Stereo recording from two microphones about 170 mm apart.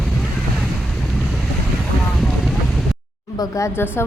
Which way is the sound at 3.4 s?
15° left (ahead or behind).